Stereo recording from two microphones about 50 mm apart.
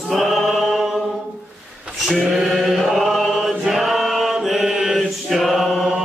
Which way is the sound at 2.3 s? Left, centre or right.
Centre.